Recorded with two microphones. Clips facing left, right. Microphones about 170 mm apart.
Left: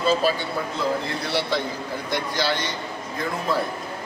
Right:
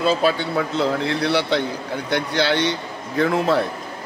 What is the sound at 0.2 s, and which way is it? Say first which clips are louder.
A man's voice: right 4 dB; 75° right (ahead or behind).